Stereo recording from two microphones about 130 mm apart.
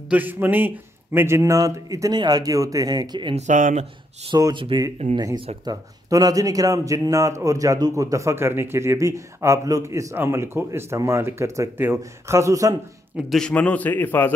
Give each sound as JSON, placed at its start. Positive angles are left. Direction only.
{"t": 0.1, "sound": "a man's voice", "side_deg": -15}
{"t": 3.3, "sound": "speech", "side_deg": -80}
{"t": 4.3, "sound": "a man's voice", "side_deg": -30}
{"t": 4.7, "sound": "a man's voice", "side_deg": -40}
{"t": 13.3, "sound": "a man's voice", "side_deg": 5}